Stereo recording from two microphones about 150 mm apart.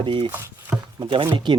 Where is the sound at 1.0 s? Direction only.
35° right (ahead or behind).